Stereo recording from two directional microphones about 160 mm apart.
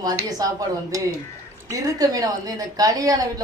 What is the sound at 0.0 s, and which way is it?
A woman's voice, 25° right (ahead or behind).